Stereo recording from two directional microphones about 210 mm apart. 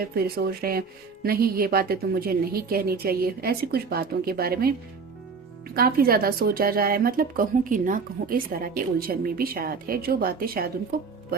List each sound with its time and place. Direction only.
0.0 s speech: 45° right (ahead or behind)
5.7 s speech: 45° right (ahead or behind)